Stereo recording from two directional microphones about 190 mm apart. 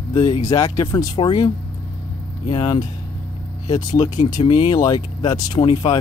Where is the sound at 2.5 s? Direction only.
20° left (ahead or behind).